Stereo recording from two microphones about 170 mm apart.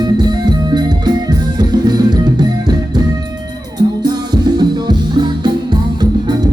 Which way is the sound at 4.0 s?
25° right (ahead or behind).